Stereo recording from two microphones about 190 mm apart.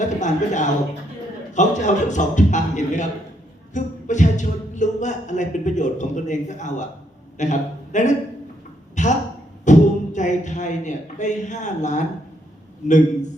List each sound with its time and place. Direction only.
0.0 s a man's voice: 40° left (ahead or behind)
9.0 s a sound: 40° left (ahead or behind)
12.8 s speech: 40° left (ahead or behind)